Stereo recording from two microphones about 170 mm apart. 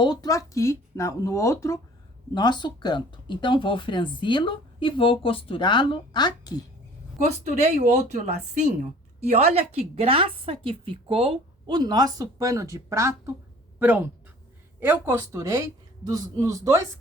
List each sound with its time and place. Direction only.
0.0 s speech: 25° left (ahead or behind)
7.3 s a woman's voice: 40° right (ahead or behind); by 16.8 s 20° right (ahead or behind)